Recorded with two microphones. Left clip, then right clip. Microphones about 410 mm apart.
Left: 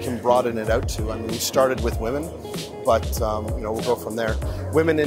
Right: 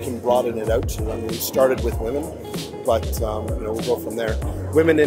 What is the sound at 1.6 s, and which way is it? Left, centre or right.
Speech, left.